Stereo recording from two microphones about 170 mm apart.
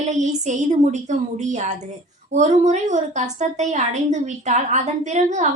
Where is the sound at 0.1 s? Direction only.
45° right (ahead or behind).